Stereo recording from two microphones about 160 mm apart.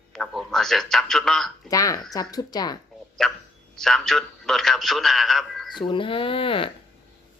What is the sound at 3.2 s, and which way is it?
A man's voice, centre (ahead or behind).